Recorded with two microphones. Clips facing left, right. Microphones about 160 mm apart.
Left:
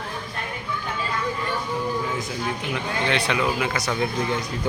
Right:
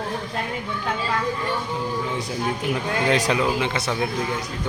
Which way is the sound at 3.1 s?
40° right (ahead or behind).